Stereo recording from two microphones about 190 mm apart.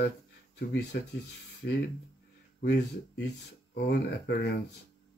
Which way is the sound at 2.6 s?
65° left (ahead or behind).